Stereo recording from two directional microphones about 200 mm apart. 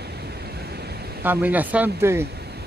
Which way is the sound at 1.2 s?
10° right (ahead or behind).